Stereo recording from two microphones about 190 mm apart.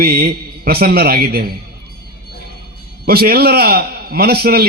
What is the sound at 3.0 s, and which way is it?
A man's voice, 55° right (ahead or behind).